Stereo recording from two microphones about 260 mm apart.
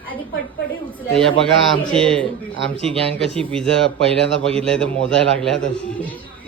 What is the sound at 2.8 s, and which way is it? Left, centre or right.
Speech, right.